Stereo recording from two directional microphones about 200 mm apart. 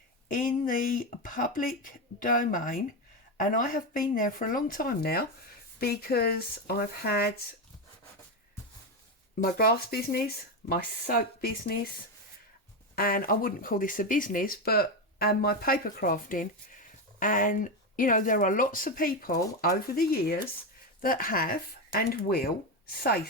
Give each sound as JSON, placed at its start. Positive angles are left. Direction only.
{"t": 0.3, "sound": "speech", "side_deg": 45}
{"t": 9.4, "sound": "speech", "side_deg": 50}
{"t": 13.0, "sound": "speech", "side_deg": 45}